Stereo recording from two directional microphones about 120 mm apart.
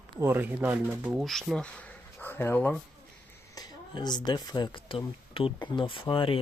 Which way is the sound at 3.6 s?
35° left (ahead or behind).